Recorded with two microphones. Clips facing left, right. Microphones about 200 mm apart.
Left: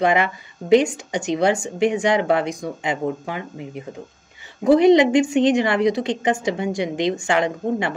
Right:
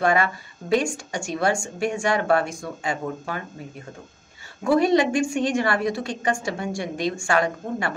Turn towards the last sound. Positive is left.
turn(degrees=20)  # may be behind; listen again after turning